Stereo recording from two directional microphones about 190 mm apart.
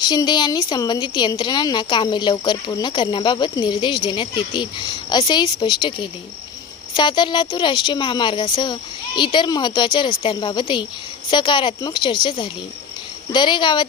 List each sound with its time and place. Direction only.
0.0 s speech: 20° left (ahead or behind)